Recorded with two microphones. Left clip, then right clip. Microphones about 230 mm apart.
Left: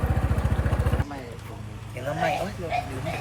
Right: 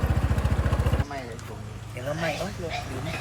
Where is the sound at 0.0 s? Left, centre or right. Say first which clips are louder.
Left 1 dB; centre.